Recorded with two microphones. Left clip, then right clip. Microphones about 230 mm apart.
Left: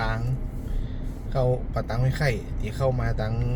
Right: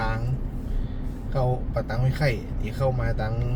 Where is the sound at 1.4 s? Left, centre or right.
Left.